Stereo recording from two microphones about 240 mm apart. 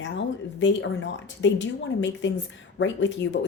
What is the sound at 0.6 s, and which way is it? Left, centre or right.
A woman's voice, left.